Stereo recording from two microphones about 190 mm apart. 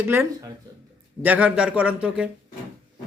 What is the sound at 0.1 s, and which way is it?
A man's voice, 15° right (ahead or behind).